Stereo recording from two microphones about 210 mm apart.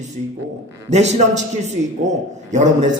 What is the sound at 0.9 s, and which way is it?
Speech, 30° right (ahead or behind).